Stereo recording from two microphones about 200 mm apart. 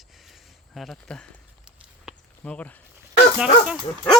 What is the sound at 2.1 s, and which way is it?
Walk, 5° left (ahead or behind).